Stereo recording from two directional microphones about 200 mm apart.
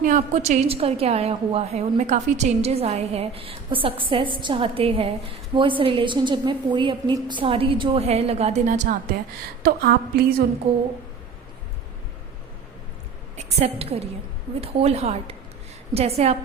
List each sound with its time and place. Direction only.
0.0 s a woman's voice: 40° right (ahead or behind)
9.6 s a woman's voice: 50° right (ahead or behind)
13.3 s a woman's voice: 30° right (ahead or behind)